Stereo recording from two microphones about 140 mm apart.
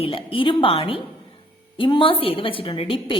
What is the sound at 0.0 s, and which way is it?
A woman's voice, 40° left (ahead or behind).